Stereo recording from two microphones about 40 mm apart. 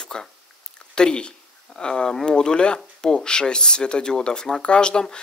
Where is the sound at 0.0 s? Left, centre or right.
Centre.